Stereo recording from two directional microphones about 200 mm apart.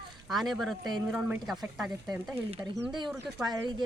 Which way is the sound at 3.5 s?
20° right (ahead or behind).